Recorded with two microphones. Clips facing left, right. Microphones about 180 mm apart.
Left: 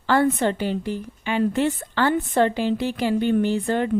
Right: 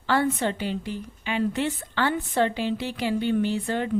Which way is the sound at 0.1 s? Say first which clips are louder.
Left 4 dB; 50° left (ahead or behind).